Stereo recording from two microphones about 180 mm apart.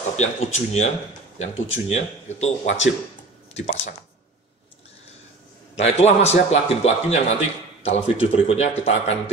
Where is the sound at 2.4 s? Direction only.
40° left (ahead or behind).